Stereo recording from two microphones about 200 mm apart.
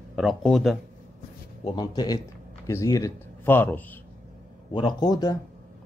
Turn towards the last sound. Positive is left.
turn(degrees=20)  # may be behind; listen again after turning